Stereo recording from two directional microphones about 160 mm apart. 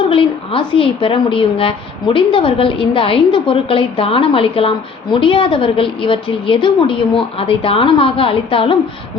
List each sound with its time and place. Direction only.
0.0 s a woman's voice: 35° left (ahead or behind)